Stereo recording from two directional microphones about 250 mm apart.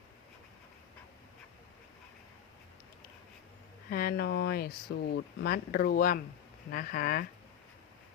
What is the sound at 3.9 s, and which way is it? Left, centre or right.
A woman's voice, left.